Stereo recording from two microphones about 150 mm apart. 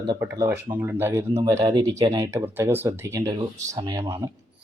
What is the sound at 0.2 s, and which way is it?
Speech, 20° right (ahead or behind).